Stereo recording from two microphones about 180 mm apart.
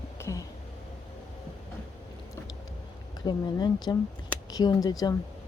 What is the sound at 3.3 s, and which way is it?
Speech, 25° left (ahead or behind).